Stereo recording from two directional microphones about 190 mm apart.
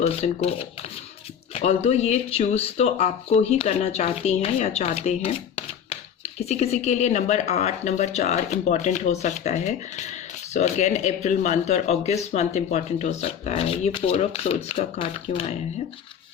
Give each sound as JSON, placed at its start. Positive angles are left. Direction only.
{"t": 0.0, "sound": "speech", "side_deg": 30}